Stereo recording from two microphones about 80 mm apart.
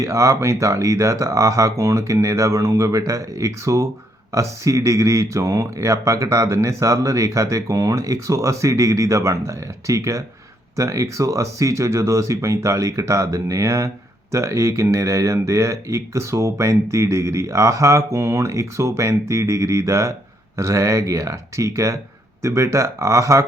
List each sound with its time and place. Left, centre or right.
0.0 s speech: right